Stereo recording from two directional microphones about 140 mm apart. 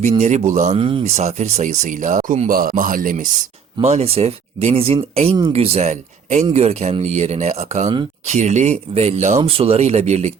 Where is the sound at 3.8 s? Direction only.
50° right (ahead or behind).